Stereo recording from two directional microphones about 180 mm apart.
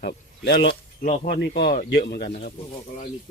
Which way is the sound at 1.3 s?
70° left (ahead or behind).